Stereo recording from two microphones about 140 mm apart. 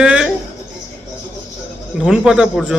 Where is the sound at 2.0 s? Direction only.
5° right (ahead or behind).